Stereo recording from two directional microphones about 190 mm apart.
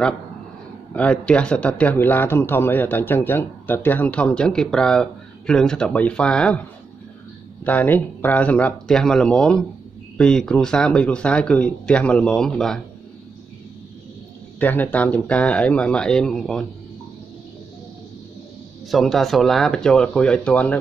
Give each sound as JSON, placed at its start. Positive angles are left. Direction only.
{"t": 0.9, "sound": "speech", "side_deg": 5}
{"t": 7.6, "sound": "speech", "side_deg": 10}
{"t": 14.6, "sound": "speech", "side_deg": 10}
{"t": 18.9, "sound": "speech", "side_deg": 0}